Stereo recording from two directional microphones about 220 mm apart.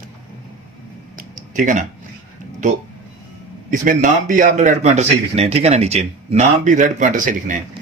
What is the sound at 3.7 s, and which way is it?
A man's voice, 35° right (ahead or behind).